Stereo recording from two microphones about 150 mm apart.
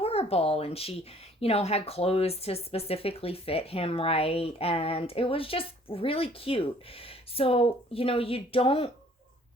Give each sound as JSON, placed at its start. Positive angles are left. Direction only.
{"t": 0.0, "sound": "speech", "side_deg": 40}